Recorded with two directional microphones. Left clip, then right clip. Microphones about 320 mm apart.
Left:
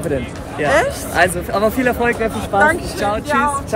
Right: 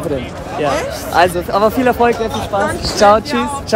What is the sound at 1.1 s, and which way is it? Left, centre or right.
Speech, centre.